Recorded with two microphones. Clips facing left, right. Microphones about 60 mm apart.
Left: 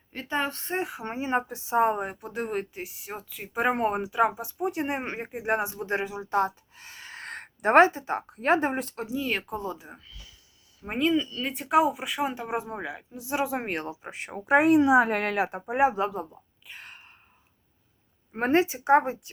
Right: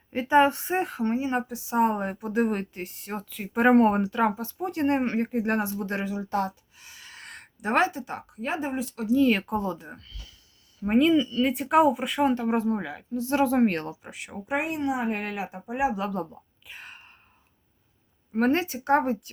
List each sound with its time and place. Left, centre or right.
0.1 s speech: centre
0.8 s speech: centre
1.0 s speech: left
2.0 s speech: centre; by 6.5 s left
6.7 s a sound: left
8.4 s speech: left
9.1 s speech: centre
13.9 s speech: left
14.4 s speech: left
16.2 s a sound: centre
18.3 s speech: left